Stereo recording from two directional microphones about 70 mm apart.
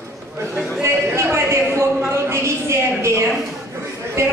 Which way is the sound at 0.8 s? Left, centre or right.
Right.